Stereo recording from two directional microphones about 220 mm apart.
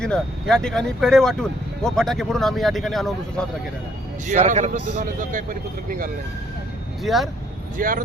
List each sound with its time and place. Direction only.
0.0 s speech: 5° left (ahead or behind)
4.3 s speech: 35° right (ahead or behind)
7.0 s speech: centre (ahead or behind)
7.8 s speech: 40° right (ahead or behind)